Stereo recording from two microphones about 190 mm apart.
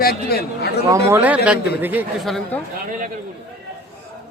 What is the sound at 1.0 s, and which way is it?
Speech, 10° right (ahead or behind).